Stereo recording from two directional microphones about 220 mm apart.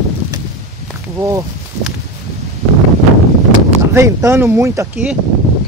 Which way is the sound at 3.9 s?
15° right (ahead or behind).